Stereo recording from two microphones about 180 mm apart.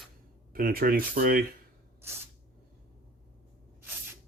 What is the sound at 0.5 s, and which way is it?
Speech, 55° right (ahead or behind).